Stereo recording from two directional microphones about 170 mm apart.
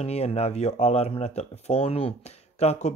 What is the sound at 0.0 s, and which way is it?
Speech, 35° left (ahead or behind).